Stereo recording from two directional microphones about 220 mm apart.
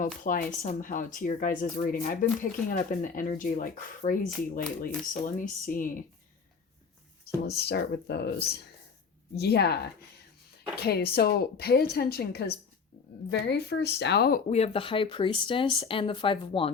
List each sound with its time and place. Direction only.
0.0 s speech: 40° left (ahead or behind)
7.5 s a woman's voice: 45° left (ahead or behind)
10.8 s a woman's voice: 45° left (ahead or behind)
14.5 s speech: 25° left (ahead or behind)